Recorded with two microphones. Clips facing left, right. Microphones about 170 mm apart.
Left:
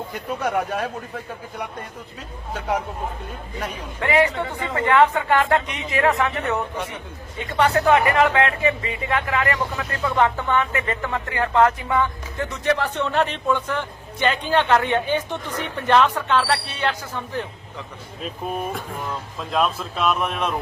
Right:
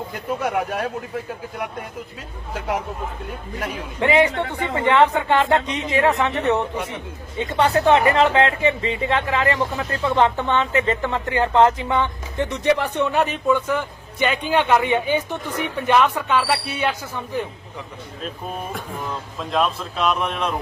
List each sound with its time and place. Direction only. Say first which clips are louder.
0.1 s speech: right 1 dB; centre (ahead or behind)
4.0 s speech: right 2 dB; 20° right (ahead or behind)
18.7 s speech: even; centre (ahead or behind)